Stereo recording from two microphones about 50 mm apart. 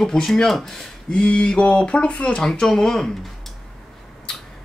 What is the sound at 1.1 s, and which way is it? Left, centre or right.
Speech, left.